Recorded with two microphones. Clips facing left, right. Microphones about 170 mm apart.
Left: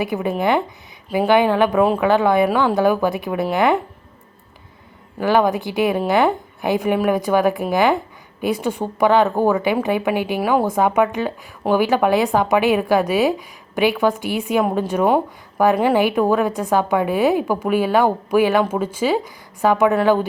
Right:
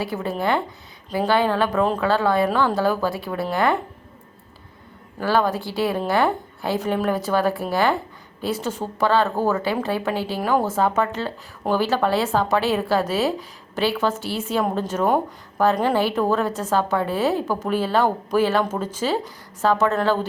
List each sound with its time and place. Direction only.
0.0 s a woman's voice: 15° left (ahead or behind)
5.2 s a woman's voice: 15° left (ahead or behind)